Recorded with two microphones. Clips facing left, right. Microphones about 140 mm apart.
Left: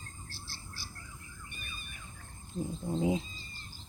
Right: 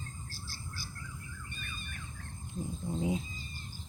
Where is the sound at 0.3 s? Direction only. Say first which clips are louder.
Right 2 dB; 40° right (ahead or behind).